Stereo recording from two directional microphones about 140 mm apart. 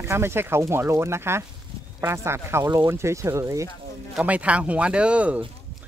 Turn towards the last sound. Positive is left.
turn(degrees=-10)  # may be behind; listen again after turning